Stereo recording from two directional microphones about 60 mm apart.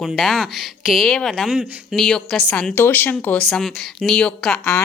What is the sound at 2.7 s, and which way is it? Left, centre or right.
Speech, left.